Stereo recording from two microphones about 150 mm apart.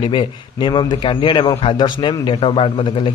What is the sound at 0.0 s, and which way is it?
A man's voice, 35° left (ahead or behind).